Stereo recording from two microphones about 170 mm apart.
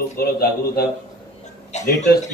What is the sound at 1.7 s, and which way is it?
Speech, 45° left (ahead or behind).